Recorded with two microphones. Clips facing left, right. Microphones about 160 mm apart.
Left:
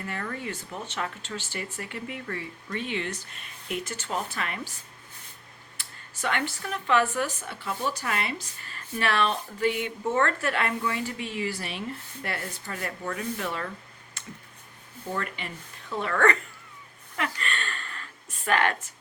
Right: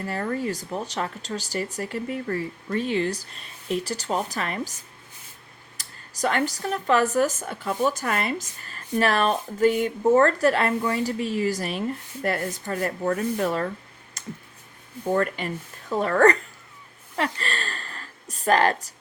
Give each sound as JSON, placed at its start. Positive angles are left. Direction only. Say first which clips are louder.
{"t": 0.0, "sound": "speech", "louder": "right 7 dB", "side_deg": -35}
{"t": 14.2, "sound": "clicking", "louder": "right 7 dB", "side_deg": -40}
{"t": 15.0, "sound": "speech", "louder": "right 9 dB", "side_deg": -45}
{"t": 17.2, "sound": "a sound", "louder": "right 4 dB", "side_deg": -35}